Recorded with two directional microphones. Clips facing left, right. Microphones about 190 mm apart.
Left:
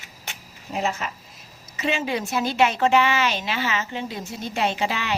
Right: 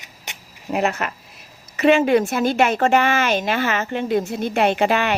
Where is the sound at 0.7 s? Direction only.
65° right (ahead or behind).